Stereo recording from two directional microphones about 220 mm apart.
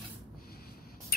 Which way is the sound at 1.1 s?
45° left (ahead or behind).